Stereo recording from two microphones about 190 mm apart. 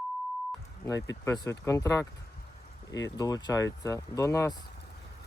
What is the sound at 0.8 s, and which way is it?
Speech, 15° left (ahead or behind).